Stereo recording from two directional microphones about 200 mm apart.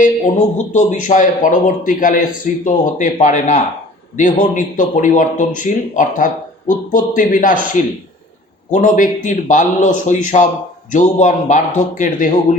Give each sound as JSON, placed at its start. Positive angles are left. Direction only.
{"t": 0.0, "sound": "a man's voice", "side_deg": 40}